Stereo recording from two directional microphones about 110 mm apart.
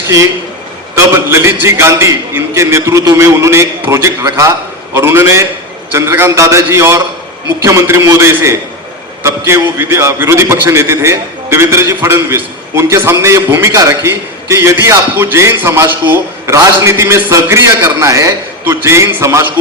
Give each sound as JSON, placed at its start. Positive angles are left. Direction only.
{"t": 0.9, "sound": "a man's voice", "side_deg": -25}